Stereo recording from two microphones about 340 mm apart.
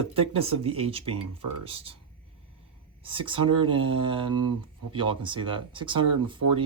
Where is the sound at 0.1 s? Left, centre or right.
Centre.